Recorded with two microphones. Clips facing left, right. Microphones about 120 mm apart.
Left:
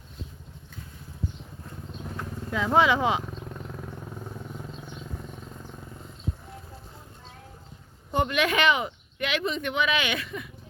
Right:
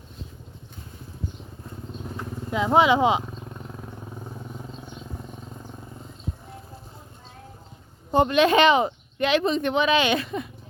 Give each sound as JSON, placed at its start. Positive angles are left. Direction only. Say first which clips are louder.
{"t": 2.0, "sound": "vehicle", "louder": "right 2 dB", "side_deg": -20}
{"t": 3.3, "sound": "vehicle", "louder": "even", "side_deg": -5}
{"t": 8.1, "sound": "speech", "louder": "right 7 dB", "side_deg": -30}